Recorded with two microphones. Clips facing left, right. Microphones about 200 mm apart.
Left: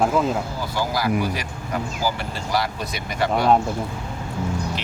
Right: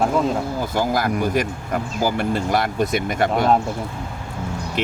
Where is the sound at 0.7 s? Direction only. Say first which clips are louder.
Right 1 dB; 50° right (ahead or behind).